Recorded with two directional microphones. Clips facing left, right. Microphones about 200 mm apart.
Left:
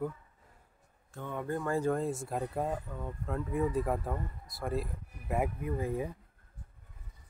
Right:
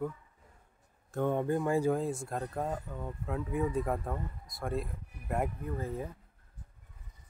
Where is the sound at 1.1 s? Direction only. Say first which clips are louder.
Right 12 dB; 45° right (ahead or behind).